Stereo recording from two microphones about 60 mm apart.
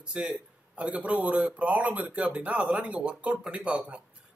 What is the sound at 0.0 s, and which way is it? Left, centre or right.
Speech, centre.